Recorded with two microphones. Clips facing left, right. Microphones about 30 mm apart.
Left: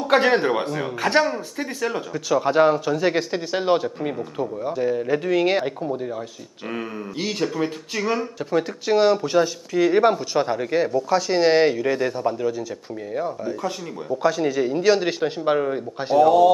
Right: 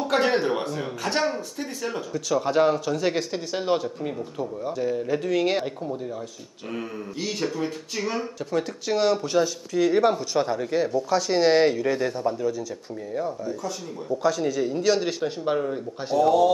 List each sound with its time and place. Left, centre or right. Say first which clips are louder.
0.1 s speech: left 5 dB; centre
10.9 s speech: left 2 dB; centre; by 16.3 s left